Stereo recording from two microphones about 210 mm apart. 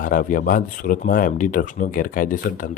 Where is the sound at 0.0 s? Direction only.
40° left (ahead or behind).